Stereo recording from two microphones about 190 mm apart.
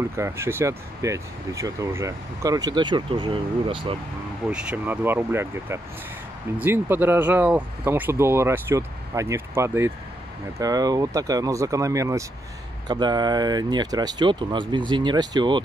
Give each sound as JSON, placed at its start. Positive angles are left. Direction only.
{"t": 0.1, "sound": "speech", "side_deg": -15}
{"t": 4.5, "sound": "speech", "side_deg": -5}